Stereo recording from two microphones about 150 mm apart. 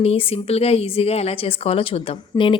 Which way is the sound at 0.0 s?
40° left (ahead or behind).